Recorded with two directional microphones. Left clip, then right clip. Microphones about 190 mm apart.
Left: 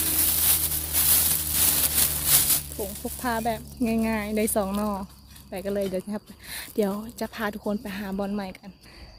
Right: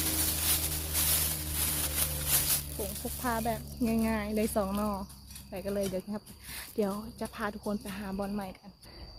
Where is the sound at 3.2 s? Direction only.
45° left (ahead or behind).